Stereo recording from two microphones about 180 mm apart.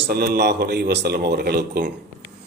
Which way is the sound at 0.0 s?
60° right (ahead or behind).